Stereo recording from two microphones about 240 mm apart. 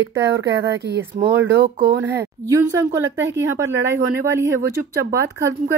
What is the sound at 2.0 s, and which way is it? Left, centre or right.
Speech, centre.